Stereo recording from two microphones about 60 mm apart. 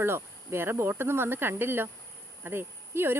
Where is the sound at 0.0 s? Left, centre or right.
Right.